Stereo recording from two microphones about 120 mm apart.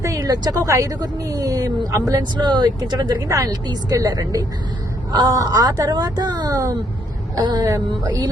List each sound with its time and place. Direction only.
0.0 s a woman's voice: 30° right (ahead or behind)